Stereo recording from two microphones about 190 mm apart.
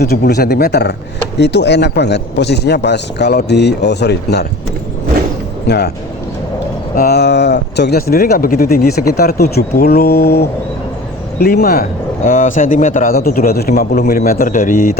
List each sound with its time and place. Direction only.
0.0 s speech: 55° left (ahead or behind)
5.6 s speech: 60° left (ahead or behind)
6.9 s a man's voice: 55° left (ahead or behind)